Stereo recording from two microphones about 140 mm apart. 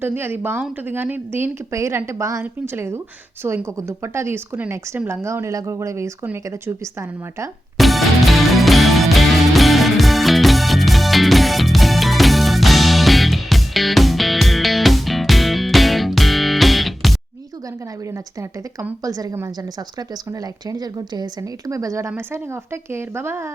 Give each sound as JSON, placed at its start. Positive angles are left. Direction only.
{"t": 0.0, "sound": "a woman's voice", "side_deg": -15}
{"t": 7.8, "sound": "music", "side_deg": 0}
{"t": 18.1, "sound": "a woman's voice", "side_deg": -25}